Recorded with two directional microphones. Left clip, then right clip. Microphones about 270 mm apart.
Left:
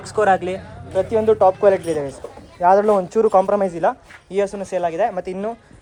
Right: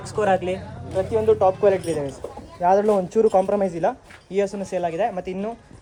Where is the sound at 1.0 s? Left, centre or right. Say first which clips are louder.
Left 3 dB; left.